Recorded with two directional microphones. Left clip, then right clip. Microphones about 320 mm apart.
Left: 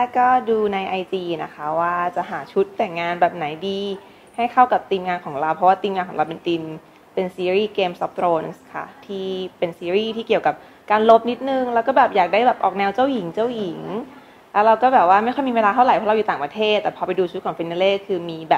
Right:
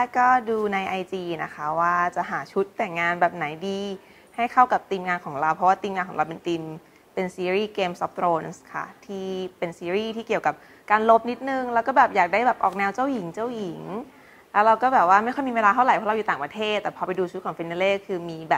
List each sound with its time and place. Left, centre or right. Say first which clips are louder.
0.0 s a woman's voice: left 3 dB; right